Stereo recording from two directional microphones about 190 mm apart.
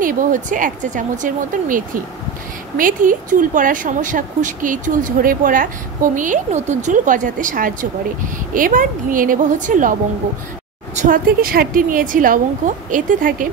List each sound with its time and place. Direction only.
0.0 s speech: 45° right (ahead or behind)
11.0 s speech: 50° right (ahead or behind)